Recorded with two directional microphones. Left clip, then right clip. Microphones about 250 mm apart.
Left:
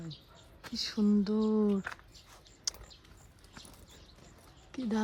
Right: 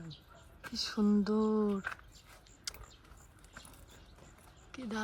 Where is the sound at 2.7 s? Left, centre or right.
Left.